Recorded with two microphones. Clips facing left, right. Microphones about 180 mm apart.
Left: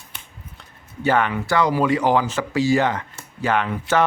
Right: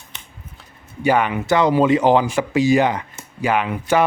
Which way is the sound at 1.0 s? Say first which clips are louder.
Right 2 dB; 15° right (ahead or behind).